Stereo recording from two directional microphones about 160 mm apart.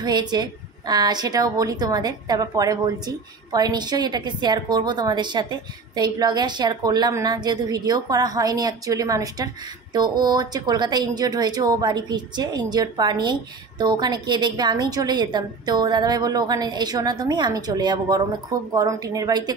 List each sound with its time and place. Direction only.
0.0 s a woman's voice: 25° right (ahead or behind)